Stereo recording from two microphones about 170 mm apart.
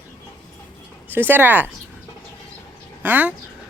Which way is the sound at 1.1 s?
10° right (ahead or behind).